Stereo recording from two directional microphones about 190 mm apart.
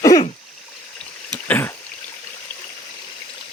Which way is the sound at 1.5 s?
10° left (ahead or behind).